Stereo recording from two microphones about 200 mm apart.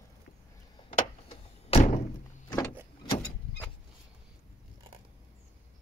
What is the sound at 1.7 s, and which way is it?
Thunk, 30° left (ahead or behind).